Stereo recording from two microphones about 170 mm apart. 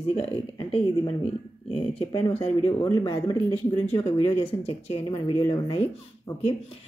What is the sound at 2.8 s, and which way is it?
Speech, 25° left (ahead or behind).